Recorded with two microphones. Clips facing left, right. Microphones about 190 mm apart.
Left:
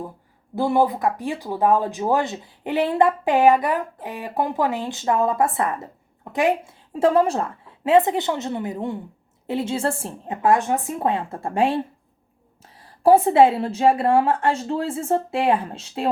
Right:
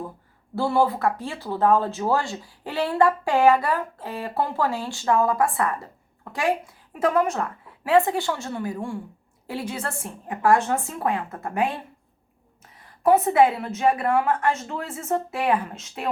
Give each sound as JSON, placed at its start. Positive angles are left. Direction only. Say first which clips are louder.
{"t": 0.5, "sound": "a woman's voice", "louder": "left 2 dB", "side_deg": 15}